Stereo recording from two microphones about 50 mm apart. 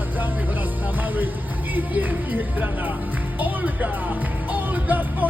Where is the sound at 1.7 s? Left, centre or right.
Right.